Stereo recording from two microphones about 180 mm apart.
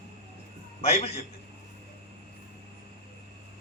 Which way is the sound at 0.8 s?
35° left (ahead or behind).